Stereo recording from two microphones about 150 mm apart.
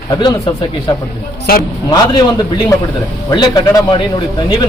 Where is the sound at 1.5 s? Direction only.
85° left.